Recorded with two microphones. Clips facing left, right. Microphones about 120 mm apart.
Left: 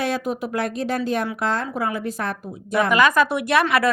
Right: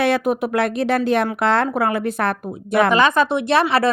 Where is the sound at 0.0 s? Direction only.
65° right (ahead or behind).